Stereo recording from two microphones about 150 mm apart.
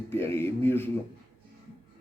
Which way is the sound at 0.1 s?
15° left (ahead or behind).